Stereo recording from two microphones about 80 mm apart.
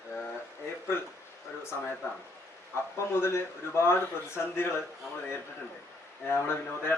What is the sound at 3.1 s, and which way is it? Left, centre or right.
A man's voice, left.